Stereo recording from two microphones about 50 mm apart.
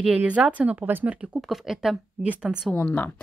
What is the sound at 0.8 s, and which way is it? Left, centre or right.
Speech, right.